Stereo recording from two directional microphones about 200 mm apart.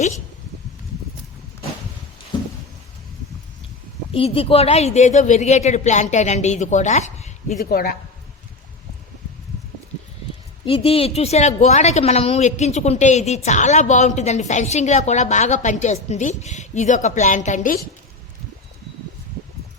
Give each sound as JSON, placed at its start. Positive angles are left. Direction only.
{"t": 4.1, "sound": "a woman's voice", "side_deg": 25}
{"t": 7.6, "sound": "speech", "side_deg": 50}
{"t": 10.7, "sound": "a woman's voice", "side_deg": 30}